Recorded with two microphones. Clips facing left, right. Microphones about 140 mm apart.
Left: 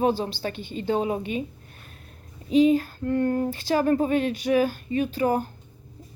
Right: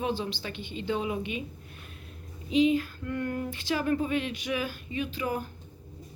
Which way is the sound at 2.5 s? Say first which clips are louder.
Left 5 dB; 40° left (ahead or behind).